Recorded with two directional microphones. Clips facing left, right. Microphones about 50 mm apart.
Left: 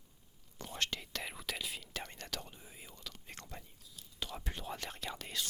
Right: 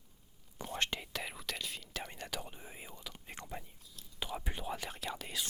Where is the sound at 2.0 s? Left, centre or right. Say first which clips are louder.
Right 2 dB; centre.